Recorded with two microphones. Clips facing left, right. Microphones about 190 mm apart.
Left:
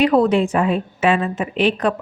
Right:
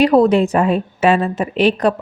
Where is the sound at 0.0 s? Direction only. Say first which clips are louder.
Right 3 dB; 35° right (ahead or behind).